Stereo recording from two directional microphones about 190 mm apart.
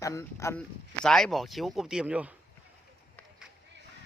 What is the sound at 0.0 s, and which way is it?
Speech, 15° left (ahead or behind).